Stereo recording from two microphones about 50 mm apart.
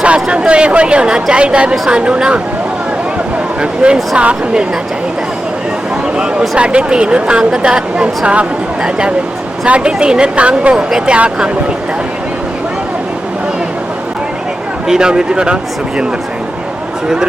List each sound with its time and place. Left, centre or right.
0.0 s speech: right
3.6 s speech: centre
6.6 s speech: centre
14.8 s speech: centre